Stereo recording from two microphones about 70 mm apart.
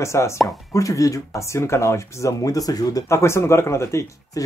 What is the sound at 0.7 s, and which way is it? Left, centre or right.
Speech, left.